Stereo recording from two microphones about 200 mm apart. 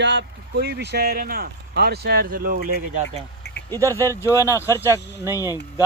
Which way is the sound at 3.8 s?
15° right (ahead or behind).